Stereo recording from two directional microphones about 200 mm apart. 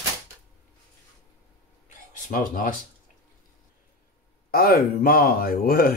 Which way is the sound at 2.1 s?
45° left (ahead or behind).